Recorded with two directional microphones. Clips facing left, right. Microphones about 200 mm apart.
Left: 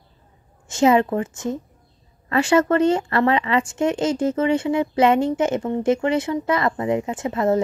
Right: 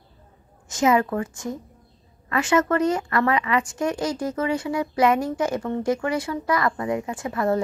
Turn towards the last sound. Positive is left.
turn(degrees=20)  # may be behind; listen again after turning